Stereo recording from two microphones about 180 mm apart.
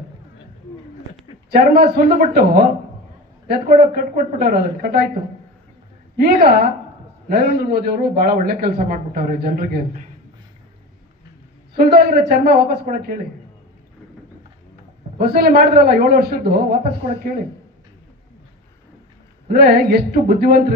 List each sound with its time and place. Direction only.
1.5 s a man's voice: 60° right (ahead or behind)
6.1 s a man's voice: 55° right (ahead or behind)
11.7 s a man's voice: 60° right (ahead or behind)
15.1 s a man's voice: 60° right (ahead or behind)
19.4 s a man's voice: 60° right (ahead or behind)